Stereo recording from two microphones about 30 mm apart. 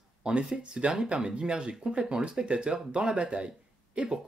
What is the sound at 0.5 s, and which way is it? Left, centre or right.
Speech, right.